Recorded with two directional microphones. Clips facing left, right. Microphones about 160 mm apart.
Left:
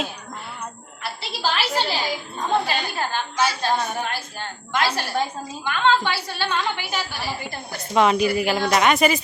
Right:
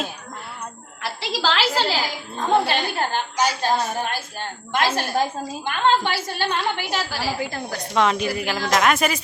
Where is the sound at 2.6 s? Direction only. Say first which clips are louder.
Right 3 dB; 60° right (ahead or behind).